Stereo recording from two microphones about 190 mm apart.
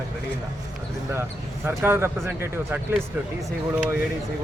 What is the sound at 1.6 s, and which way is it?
A man's voice, 10° right (ahead or behind).